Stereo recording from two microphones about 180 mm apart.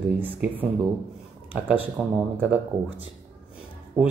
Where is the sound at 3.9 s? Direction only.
15° right (ahead or behind).